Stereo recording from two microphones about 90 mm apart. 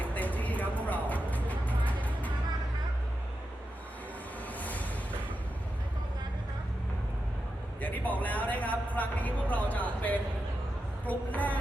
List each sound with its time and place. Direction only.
0.0 s music: 15° left (ahead or behind)
4.6 s a sound: 15° left (ahead or behind)
7.8 s a man's voice: 15° left (ahead or behind)